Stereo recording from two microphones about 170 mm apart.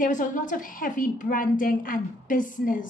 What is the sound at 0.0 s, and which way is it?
A woman's voice, 50° left (ahead or behind).